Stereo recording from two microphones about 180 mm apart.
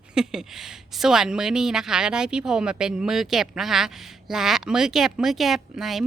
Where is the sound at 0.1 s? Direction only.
5° right (ahead or behind).